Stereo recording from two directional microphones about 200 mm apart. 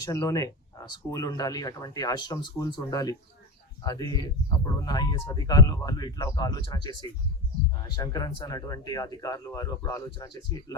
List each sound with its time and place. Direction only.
0.0 s speech: 15° left (ahead or behind)